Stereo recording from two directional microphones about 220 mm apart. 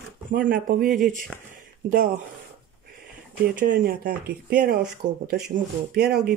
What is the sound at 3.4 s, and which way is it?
Speech, 45° right (ahead or behind).